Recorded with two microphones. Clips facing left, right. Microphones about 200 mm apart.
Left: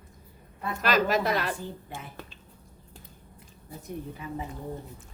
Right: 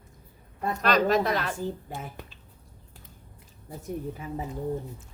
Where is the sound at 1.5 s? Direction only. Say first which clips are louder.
Right 5 dB; 45° right (ahead or behind).